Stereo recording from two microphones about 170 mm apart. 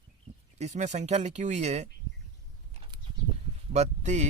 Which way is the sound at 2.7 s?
30° right (ahead or behind).